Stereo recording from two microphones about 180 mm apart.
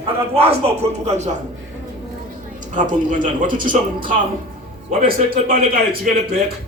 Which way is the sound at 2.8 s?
45° right (ahead or behind).